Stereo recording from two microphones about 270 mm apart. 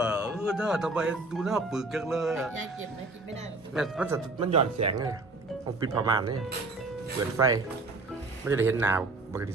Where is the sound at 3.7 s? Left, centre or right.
Centre.